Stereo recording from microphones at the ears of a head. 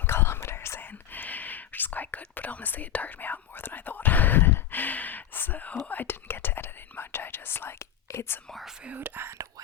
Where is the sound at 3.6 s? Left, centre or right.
Left.